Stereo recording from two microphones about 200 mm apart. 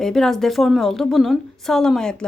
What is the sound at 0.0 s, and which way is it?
A woman's voice, centre (ahead or behind).